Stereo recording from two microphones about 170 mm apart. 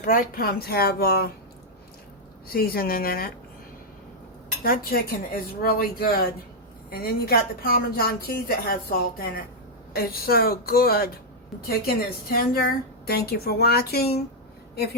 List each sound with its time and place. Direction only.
0.0 s a woman's voice: 55° left (ahead or behind)
2.5 s a woman's voice: 60° left (ahead or behind)
4.6 s a woman's voice: 60° left (ahead or behind)